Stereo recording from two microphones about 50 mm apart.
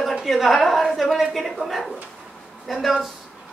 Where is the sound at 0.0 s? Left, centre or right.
Centre.